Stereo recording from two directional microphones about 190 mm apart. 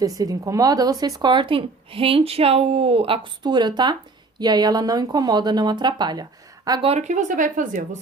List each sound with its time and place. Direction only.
0.0 s speech: 20° right (ahead or behind)
6.9 s speech: 40° right (ahead or behind)